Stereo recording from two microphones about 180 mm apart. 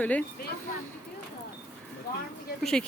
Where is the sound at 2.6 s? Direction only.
5° left (ahead or behind).